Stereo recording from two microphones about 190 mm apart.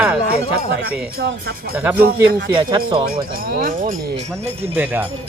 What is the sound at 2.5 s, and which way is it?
Speech, 25° right (ahead or behind).